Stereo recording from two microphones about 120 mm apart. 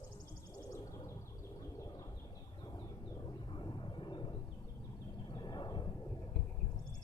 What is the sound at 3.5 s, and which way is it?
Vehicle, 40° left (ahead or behind).